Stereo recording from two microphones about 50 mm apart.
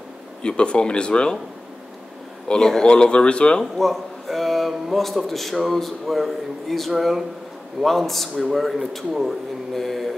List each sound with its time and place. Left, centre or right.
0.4 s speech: centre
2.4 s a man's voice: centre
3.7 s a man's voice: centre